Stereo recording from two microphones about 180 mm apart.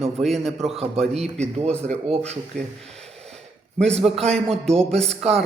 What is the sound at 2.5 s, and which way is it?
Gasp, 5° left (ahead or behind).